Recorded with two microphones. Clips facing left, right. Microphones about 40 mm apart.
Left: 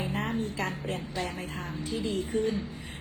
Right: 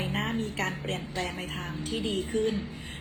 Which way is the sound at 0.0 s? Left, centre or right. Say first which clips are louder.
Even; right.